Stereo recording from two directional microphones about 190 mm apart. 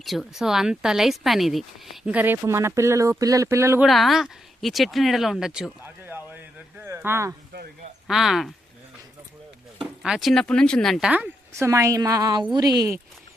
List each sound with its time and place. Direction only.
0.0 s speech: centre (ahead or behind)
3.8 s speech: centre (ahead or behind)
7.5 s a sound: 55° right (ahead or behind)
8.0 s speech: centre (ahead or behind)
9.8 s speech: centre (ahead or behind); by 13.0 s 20° right (ahead or behind)